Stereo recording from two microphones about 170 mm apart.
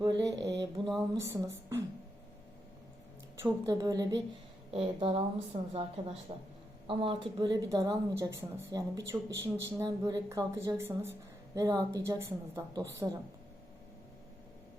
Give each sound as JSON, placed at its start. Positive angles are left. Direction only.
{"t": 0.0, "sound": "a woman's voice", "side_deg": -20}
{"t": 3.4, "sound": "a woman's voice", "side_deg": -20}
{"t": 4.7, "sound": "a woman's voice", "side_deg": -35}